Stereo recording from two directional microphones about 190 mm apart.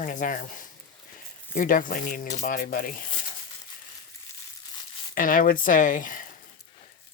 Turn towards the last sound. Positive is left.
turn(degrees=45)  # may be behind; listen again after turning